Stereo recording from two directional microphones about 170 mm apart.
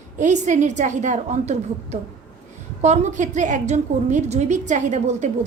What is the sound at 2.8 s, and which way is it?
A woman's voice, 40° right (ahead or behind).